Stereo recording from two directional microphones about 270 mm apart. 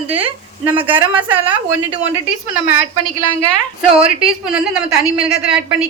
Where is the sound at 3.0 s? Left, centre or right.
Centre.